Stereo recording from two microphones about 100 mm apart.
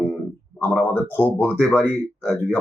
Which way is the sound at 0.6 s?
20° left (ahead or behind).